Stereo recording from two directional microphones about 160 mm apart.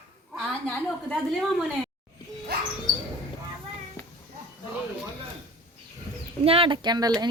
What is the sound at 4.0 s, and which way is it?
Children playing, 15° left (ahead or behind).